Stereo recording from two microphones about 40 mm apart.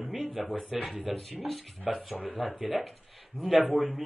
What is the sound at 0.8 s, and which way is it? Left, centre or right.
Speech, right.